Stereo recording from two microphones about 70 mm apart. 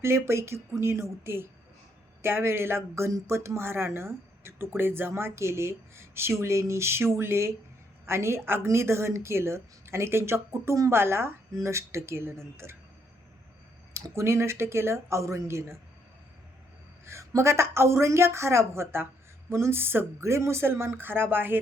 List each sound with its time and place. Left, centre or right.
0.0 s speech: right
13.9 s speech: right
17.1 s speech: right